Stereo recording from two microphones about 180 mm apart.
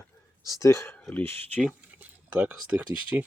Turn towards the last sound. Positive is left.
turn(degrees=-10)  # may be behind; listen again after turning